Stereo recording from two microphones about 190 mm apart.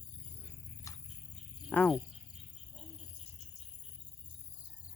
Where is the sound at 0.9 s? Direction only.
15° left (ahead or behind).